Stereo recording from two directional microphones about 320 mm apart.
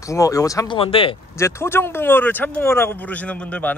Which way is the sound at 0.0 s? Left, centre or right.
Centre.